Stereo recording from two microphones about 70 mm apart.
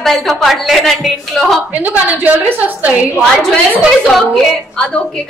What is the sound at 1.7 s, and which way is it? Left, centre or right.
A woman's voice, right.